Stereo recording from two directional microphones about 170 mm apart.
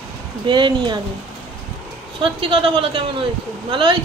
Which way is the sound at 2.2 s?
30° right (ahead or behind).